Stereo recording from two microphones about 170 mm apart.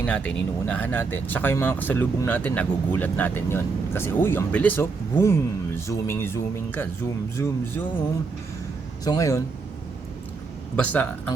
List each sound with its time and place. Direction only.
0.0 s speech: 10° left (ahead or behind)
9.0 s speech: 20° left (ahead or behind)
10.8 s speech: 10° left (ahead or behind)